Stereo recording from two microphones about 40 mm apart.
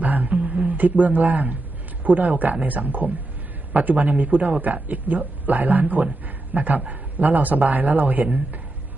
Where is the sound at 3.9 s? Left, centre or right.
Right.